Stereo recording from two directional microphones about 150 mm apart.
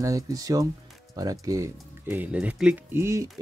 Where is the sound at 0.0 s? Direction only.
20° right (ahead or behind).